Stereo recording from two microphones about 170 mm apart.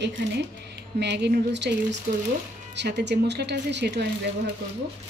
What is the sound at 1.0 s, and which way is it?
Speech, 85° right.